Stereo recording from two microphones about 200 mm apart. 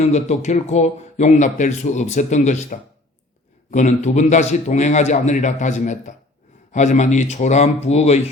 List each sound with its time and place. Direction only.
0.0 s speech: 35° left (ahead or behind)